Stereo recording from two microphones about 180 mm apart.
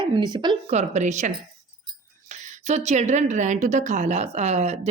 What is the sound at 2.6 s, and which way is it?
A woman's voice, 40° right (ahead or behind).